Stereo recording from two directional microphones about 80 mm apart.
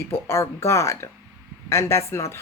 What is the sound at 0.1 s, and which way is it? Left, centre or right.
Speech, left.